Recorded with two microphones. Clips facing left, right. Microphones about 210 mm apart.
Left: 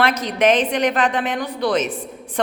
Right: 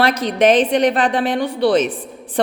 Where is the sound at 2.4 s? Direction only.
35° right (ahead or behind).